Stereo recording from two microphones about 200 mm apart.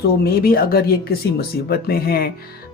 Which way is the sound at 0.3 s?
50° left (ahead or behind).